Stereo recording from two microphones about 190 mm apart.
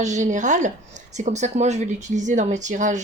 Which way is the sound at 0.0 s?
40° right (ahead or behind).